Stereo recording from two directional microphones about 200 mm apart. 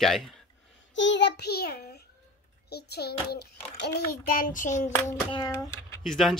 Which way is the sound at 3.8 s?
50° left (ahead or behind).